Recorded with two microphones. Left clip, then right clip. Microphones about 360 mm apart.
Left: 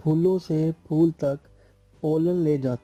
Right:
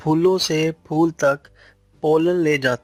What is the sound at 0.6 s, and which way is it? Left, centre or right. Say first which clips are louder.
Speech: right 3 dB; right.